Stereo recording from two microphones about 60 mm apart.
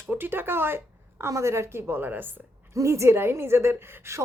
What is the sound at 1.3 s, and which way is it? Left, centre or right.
A woman's voice, right.